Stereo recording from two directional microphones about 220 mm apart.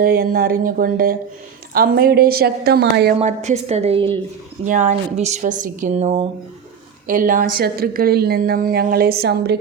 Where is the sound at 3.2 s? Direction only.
30° right (ahead or behind).